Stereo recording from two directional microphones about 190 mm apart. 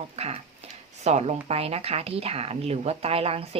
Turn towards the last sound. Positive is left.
turn(degrees=-30)  # may be behind; listen again after turning